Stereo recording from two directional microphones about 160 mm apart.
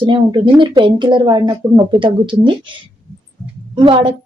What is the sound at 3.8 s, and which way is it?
Speech, 30° right (ahead or behind).